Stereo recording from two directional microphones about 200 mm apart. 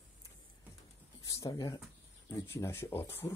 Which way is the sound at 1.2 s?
15° left (ahead or behind).